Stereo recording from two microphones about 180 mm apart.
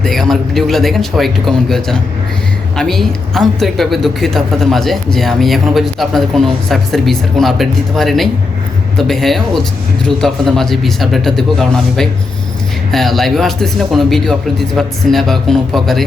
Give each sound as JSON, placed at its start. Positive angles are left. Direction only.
{"t": 0.0, "sound": "a woman's voice", "side_deg": 0}